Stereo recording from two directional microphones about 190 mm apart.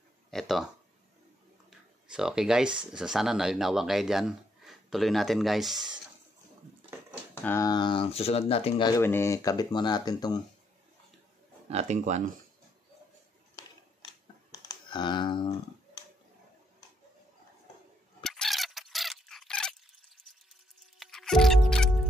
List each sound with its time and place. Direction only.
0.3 s speech: centre (ahead or behind)
1.7 s a sound: 5° right (ahead or behind)
2.9 s speech: 5° right (ahead or behind)
7.4 s speech: 15° left (ahead or behind)
11.7 s speech: 35° right (ahead or behind)
14.5 s computer keyboard: 20° left (ahead or behind)
18.2 s a sound: centre (ahead or behind)
21.0 s music: centre (ahead or behind)